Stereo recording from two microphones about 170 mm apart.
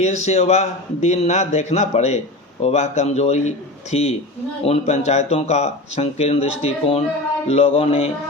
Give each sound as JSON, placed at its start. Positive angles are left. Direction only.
{"t": 0.0, "sound": "a man's voice", "side_deg": 40}